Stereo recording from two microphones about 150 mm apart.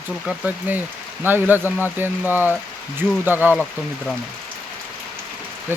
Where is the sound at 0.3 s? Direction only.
10° right (ahead or behind).